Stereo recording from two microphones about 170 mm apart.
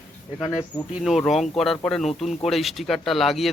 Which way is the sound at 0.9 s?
Centre (ahead or behind).